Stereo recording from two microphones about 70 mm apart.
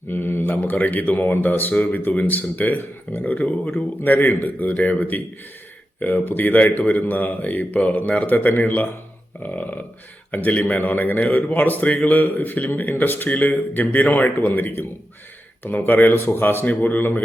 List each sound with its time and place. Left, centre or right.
0.1 s a man's voice: left